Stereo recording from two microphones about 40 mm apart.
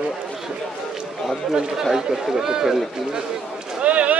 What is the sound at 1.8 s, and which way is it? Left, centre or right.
Speech, centre.